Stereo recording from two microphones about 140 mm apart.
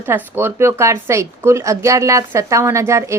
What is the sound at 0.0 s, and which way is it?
Speech, 15° right (ahead or behind).